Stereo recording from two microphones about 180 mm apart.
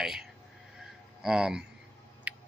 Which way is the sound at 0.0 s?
5° right (ahead or behind).